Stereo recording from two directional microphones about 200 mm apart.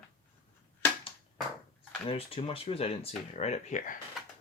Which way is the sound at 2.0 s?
25° left (ahead or behind).